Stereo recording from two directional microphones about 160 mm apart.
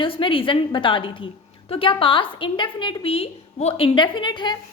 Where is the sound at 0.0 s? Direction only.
30° left (ahead or behind).